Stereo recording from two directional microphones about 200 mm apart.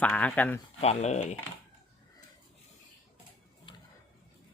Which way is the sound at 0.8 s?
35° left (ahead or behind).